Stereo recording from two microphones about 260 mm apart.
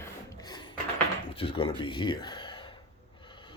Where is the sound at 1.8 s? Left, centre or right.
Centre.